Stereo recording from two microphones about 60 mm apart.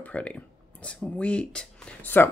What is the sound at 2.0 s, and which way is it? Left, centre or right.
Speech, left.